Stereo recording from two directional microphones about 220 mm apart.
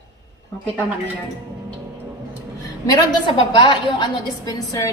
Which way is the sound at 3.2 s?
20° left (ahead or behind).